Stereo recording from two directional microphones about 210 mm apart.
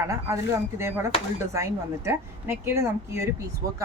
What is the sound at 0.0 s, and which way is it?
Speech, 15° right (ahead or behind).